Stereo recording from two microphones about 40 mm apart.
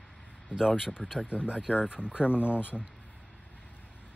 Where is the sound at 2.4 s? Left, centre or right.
Left.